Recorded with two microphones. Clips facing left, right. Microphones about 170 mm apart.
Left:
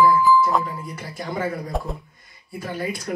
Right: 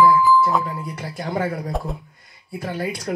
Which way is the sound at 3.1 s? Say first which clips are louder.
Right 3 dB; 45° right (ahead or behind).